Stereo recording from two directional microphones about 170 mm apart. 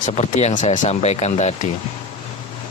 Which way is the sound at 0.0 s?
45° left (ahead or behind).